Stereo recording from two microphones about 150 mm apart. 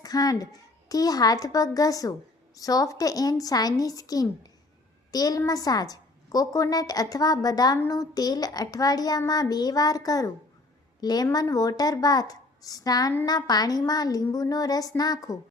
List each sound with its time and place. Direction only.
0.0 s a woman's voice: 25° left (ahead or behind)